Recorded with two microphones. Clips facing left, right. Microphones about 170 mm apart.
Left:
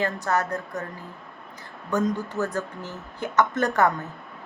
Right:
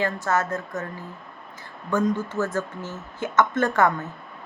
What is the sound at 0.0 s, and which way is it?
Speech, 35° left (ahead or behind).